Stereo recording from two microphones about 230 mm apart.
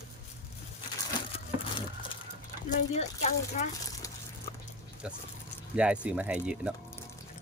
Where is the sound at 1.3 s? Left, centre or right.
Left.